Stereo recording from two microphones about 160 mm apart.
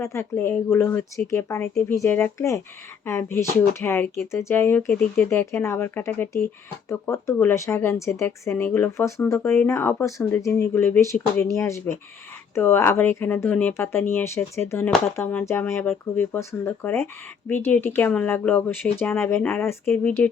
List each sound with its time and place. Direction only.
0.0 s speech: 15° left (ahead or behind)
19.8 s speech: centre (ahead or behind)